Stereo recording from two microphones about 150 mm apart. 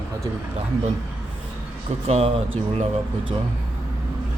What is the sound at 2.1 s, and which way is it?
Speech, 40° right (ahead or behind).